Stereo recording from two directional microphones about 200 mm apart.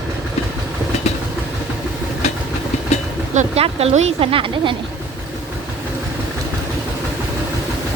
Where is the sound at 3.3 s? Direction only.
30° right (ahead or behind).